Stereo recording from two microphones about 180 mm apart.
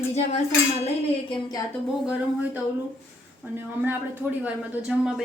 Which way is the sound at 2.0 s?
5° right (ahead or behind).